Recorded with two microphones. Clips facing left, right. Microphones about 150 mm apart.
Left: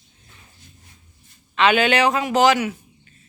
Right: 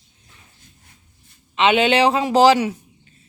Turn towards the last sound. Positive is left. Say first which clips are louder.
# right 2 dB
turn(degrees=-30)  # may be behind; listen again after turning